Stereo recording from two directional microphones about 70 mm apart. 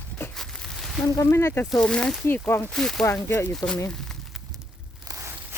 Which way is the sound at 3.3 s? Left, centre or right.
Left.